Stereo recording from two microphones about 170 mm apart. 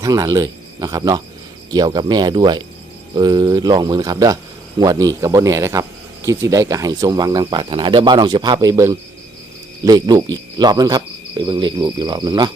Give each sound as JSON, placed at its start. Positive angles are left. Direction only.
{"t": 0.0, "sound": "speech", "side_deg": -20}